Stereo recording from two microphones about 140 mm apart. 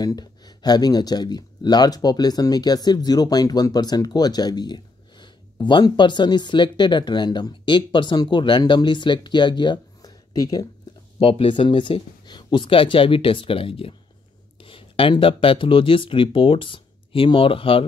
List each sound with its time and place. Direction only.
0.0 s speech: 30° left (ahead or behind)
11.1 s speech: 40° left (ahead or behind)